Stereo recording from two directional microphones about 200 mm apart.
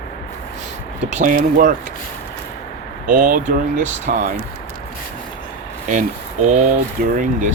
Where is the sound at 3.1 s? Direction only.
40° right (ahead or behind).